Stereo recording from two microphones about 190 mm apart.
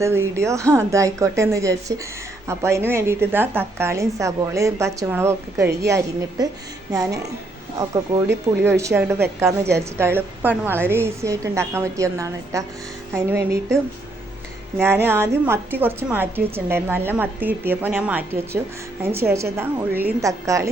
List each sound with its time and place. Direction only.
0.0 s a woman's voice: 15° right (ahead or behind)
8.3 s a woman's voice: 15° right (ahead or behind)
14.8 s a woman's voice: 10° right (ahead or behind)